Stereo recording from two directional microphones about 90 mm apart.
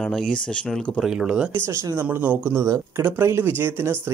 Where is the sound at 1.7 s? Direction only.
30° right (ahead or behind).